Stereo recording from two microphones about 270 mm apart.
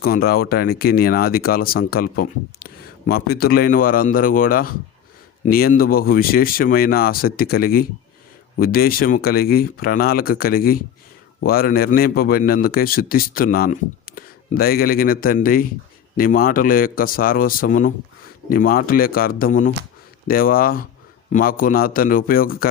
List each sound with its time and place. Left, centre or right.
0.0 s a man's voice: left